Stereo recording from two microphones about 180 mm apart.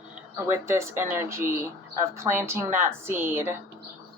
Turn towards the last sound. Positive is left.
turn(degrees=-10)  # may be behind; listen again after turning